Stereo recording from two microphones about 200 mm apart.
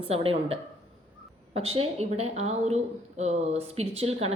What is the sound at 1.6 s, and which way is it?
A woman's voice, 30° right (ahead or behind).